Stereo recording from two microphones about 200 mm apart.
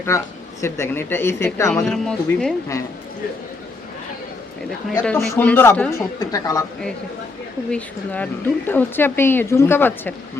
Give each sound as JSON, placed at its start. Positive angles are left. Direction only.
{"t": 0.1, "sound": "speech", "side_deg": 15}
{"t": 1.7, "sound": "speech", "side_deg": 5}
{"t": 5.0, "sound": "speech", "side_deg": 10}
{"t": 7.7, "sound": "speech", "side_deg": 5}